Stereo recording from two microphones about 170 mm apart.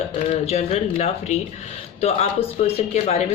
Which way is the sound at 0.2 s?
40° left (ahead or behind).